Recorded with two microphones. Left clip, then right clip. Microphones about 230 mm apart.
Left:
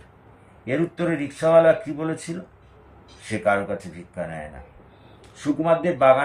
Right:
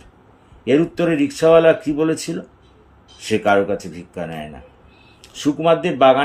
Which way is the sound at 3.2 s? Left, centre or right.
Right.